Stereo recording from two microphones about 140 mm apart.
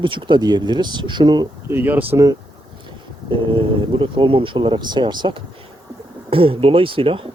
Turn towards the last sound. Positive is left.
turn(degrees=-40)  # may be behind; listen again after turning